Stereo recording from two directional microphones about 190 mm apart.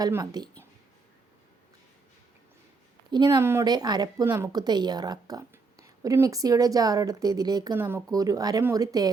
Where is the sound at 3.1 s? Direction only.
20° right (ahead or behind).